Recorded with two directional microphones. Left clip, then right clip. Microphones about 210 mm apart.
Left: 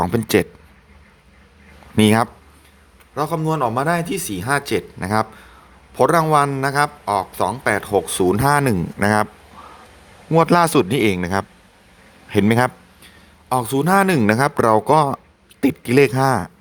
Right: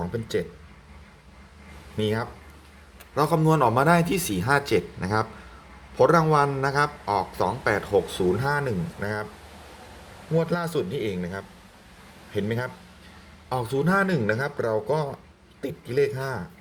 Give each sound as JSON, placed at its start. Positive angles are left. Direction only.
{"t": 0.0, "sound": "speech", "side_deg": 55}
{"t": 2.0, "sound": "speech", "side_deg": 55}
{"t": 3.2, "sound": "a man's voice", "side_deg": 15}
{"t": 10.3, "sound": "speech", "side_deg": 55}
{"t": 13.5, "sound": "speech", "side_deg": 40}